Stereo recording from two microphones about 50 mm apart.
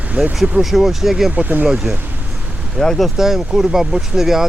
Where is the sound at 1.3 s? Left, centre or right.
Right.